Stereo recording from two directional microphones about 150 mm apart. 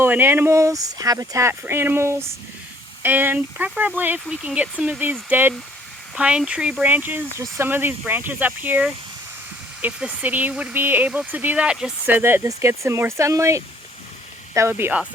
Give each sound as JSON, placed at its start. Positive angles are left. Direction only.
{"t": 0.0, "sound": "speech", "side_deg": -15}